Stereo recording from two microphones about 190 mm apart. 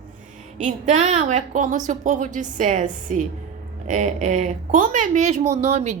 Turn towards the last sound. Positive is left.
turn(degrees=-35)  # may be behind; listen again after turning